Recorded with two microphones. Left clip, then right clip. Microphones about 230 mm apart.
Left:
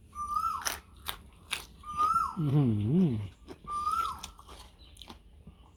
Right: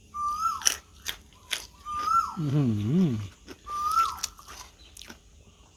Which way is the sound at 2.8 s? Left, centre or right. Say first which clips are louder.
Right 2 dB; centre.